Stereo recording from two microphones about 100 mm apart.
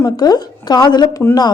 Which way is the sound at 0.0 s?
40° left (ahead or behind).